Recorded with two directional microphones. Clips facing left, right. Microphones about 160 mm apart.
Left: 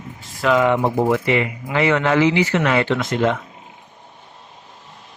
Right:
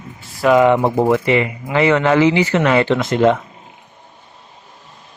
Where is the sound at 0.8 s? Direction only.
45° right (ahead or behind).